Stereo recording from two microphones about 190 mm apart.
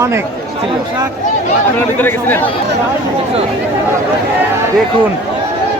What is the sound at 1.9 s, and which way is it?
Speech, 10° left (ahead or behind).